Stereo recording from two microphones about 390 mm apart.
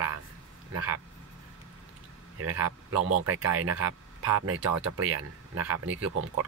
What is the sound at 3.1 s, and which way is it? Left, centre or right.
Speech, right.